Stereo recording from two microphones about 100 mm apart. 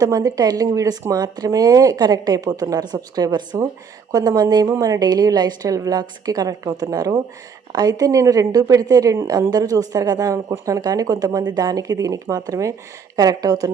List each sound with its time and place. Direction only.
0.0 s a woman's voice: 35° right (ahead or behind)